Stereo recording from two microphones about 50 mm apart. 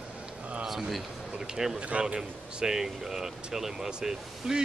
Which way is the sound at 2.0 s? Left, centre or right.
Centre.